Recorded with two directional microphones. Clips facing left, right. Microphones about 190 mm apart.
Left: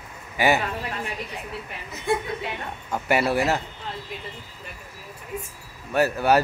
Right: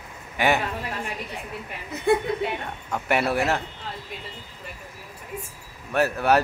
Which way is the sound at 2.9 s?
Centre (ahead or behind).